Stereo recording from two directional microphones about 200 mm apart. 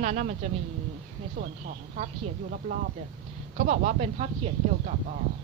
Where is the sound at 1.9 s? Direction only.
35° right (ahead or behind).